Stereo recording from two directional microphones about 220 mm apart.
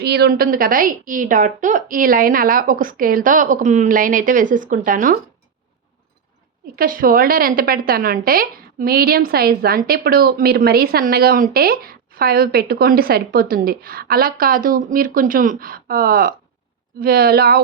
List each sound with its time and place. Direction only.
0.0 s a woman's voice: 45° right (ahead or behind)
6.7 s a woman's voice: 40° right (ahead or behind)